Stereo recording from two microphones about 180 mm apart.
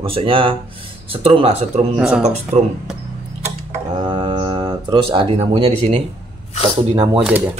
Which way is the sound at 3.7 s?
30° right (ahead or behind).